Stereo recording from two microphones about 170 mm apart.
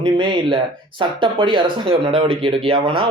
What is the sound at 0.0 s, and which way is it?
Speech, 30° right (ahead or behind).